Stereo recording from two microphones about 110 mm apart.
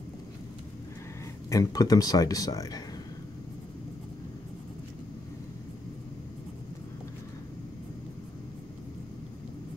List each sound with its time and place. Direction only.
1.5 s speech: 35° left (ahead or behind)